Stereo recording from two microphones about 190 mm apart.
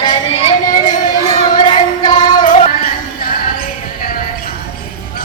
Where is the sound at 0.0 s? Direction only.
20° left (ahead or behind).